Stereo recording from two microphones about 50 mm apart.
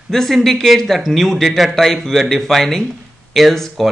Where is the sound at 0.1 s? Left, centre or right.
Centre.